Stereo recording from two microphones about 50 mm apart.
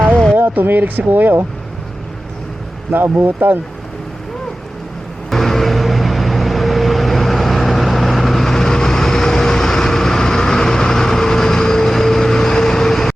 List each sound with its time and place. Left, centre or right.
0.0 s a sound: centre
0.3 s speech: right
2.9 s speech: right
5.3 s vehicle: centre